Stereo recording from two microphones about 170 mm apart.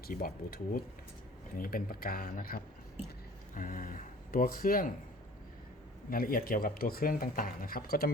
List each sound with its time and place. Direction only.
0.1 s speech: 60° left (ahead or behind)
6.1 s speech: 60° left (ahead or behind)